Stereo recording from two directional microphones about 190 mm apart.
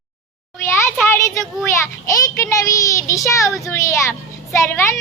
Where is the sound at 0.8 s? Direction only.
10° left (ahead or behind).